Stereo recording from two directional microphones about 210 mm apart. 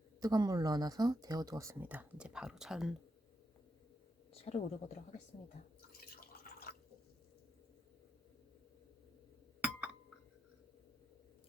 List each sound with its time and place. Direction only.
0.2 s speech: 20° right (ahead or behind); by 2.9 s centre (ahead or behind)
4.4 s speech: 30° left (ahead or behind)
6.1 s drip: 45° left (ahead or behind)